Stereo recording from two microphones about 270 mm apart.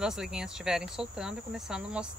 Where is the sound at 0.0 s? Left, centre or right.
Centre.